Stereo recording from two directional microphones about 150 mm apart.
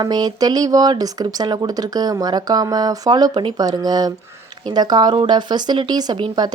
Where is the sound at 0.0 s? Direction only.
25° right (ahead or behind).